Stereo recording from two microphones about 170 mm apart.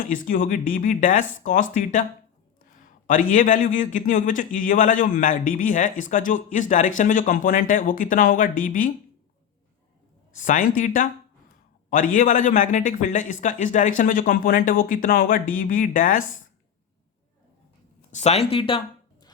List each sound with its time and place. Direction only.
0.1 s a man's voice: 50° left (ahead or behind)
3.1 s a man's voice: 50° left (ahead or behind)
10.3 s a man's voice: 50° left (ahead or behind)
18.1 s speech: 40° left (ahead or behind)